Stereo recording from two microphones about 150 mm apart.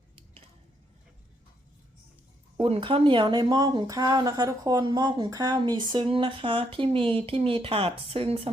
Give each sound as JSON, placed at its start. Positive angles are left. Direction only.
{"t": 2.6, "sound": "speech", "side_deg": -40}